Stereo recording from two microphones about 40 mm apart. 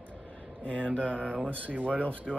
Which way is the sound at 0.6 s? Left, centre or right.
Left.